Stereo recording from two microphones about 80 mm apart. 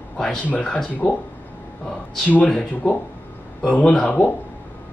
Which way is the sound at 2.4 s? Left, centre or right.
Centre.